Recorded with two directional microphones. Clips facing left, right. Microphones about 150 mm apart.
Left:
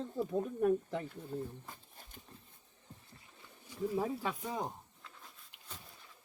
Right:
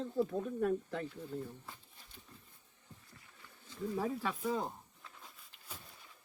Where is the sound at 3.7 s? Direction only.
15° left (ahead or behind).